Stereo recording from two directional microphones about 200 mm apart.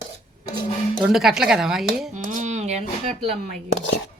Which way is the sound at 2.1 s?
35° right (ahead or behind).